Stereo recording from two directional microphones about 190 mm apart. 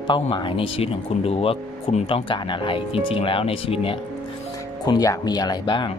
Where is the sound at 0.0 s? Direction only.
25° left (ahead or behind).